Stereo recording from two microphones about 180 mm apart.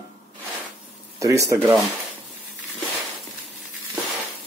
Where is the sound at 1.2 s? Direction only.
15° right (ahead or behind).